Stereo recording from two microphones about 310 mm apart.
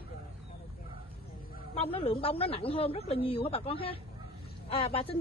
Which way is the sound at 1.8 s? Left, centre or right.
Centre.